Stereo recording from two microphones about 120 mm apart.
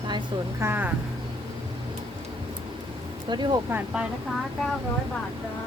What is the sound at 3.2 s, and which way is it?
Speech, 40° right (ahead or behind).